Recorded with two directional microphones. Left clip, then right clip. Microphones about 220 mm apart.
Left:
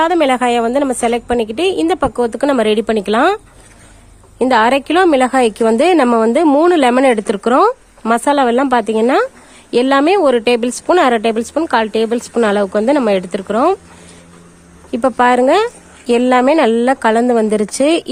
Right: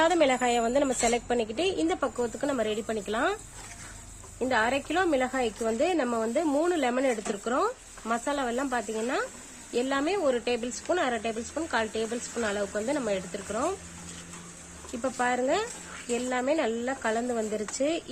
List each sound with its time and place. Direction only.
0.0 s a woman's voice: 30° left (ahead or behind); by 3.3 s 45° left (ahead or behind)
4.4 s a woman's voice: 50° left (ahead or behind)
14.9 s a woman's voice: 50° left (ahead or behind)